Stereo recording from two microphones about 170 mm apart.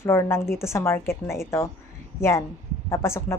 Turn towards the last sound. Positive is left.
turn(degrees=15)  # may be behind; listen again after turning